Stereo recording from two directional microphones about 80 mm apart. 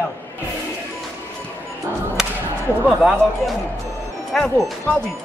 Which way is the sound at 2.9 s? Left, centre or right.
Centre.